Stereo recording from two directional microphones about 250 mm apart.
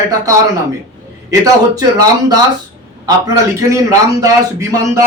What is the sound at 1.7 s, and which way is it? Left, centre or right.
A man's voice, centre.